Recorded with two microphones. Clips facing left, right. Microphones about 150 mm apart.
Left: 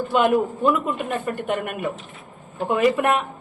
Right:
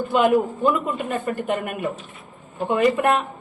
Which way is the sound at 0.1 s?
Centre (ahead or behind).